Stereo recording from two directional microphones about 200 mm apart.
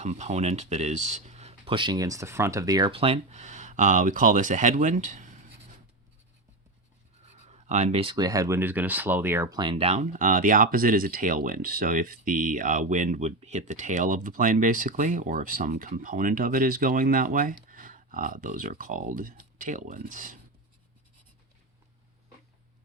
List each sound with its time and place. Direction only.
0.0 s speech: 35° right (ahead or behind)
7.4 s speech: 35° right (ahead or behind)